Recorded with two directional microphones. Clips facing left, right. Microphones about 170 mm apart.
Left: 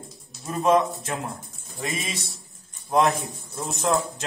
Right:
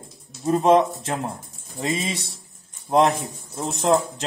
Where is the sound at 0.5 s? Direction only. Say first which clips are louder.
Right 4 dB; 30° right (ahead or behind).